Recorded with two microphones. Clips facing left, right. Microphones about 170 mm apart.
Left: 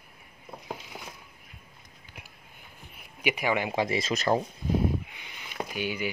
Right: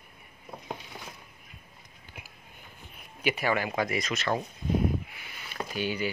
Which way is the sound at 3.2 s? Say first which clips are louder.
Even; 15° left (ahead or behind).